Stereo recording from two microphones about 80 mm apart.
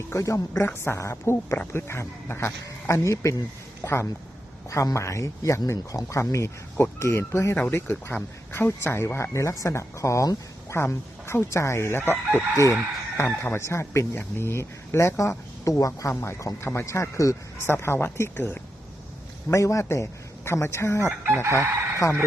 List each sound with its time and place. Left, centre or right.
0.1 s speech: left
13.1 s speech: left
19.5 s speech: left
21.2 s chicken: right